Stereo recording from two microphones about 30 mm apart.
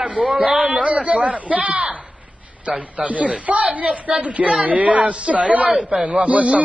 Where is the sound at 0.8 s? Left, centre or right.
Right.